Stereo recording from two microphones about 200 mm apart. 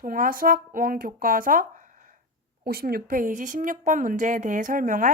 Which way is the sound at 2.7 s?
50° right (ahead or behind).